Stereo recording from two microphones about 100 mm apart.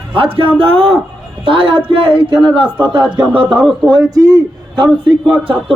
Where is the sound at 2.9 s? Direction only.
50° right (ahead or behind).